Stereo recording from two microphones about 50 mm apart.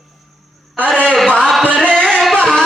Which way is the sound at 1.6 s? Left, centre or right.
Left.